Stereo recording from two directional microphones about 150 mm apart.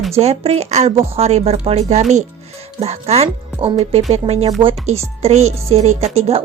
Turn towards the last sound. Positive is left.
turn(degrees=-40)  # may be behind; listen again after turning